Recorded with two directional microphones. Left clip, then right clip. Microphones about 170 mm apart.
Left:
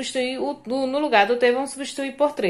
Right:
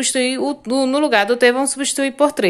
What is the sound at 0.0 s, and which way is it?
A woman's voice, 45° right (ahead or behind).